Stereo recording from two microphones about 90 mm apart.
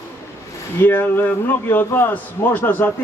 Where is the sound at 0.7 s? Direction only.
25° left (ahead or behind).